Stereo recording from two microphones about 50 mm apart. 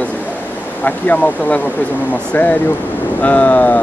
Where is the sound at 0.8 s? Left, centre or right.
Left.